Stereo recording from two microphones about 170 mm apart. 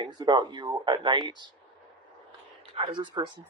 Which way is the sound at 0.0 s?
25° right (ahead or behind).